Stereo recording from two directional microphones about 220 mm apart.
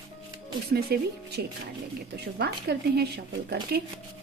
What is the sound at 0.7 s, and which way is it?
Speech, 45° right (ahead or behind).